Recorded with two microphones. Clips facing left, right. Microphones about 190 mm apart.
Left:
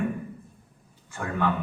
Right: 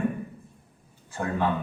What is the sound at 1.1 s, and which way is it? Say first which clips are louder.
Speech: right 1 dB; 30° right (ahead or behind).